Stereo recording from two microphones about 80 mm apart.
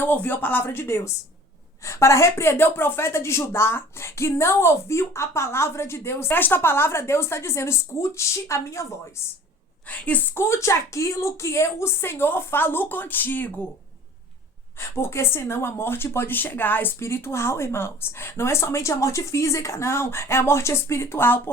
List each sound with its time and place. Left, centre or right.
0.0 s a woman's voice: left
9.8 s a woman's voice: centre
14.8 s a woman's voice: left